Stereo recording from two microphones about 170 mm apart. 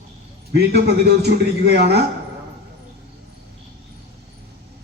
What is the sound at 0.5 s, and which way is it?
A man's voice, 75° right (ahead or behind).